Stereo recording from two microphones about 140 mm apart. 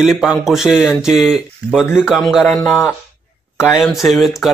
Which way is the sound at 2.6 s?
15° left (ahead or behind).